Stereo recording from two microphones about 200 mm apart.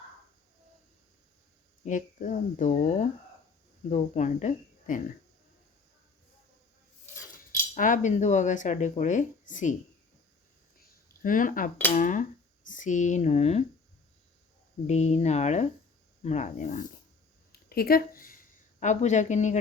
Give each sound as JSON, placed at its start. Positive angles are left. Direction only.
{"t": 1.8, "sound": "speech", "side_deg": 40}
{"t": 7.8, "sound": "speech", "side_deg": 40}
{"t": 10.8, "sound": "a sound", "side_deg": 40}
{"t": 11.9, "sound": "speech", "side_deg": 40}
{"t": 14.8, "sound": "speech", "side_deg": 35}
{"t": 17.5, "sound": "speech", "side_deg": 50}